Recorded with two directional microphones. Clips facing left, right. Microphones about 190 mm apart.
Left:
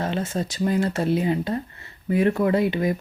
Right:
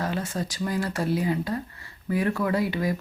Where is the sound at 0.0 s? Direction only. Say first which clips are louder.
Left 3 dB; 25° left (ahead or behind).